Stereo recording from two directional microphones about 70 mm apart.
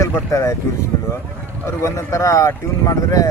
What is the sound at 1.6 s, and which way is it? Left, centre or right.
Speech, left.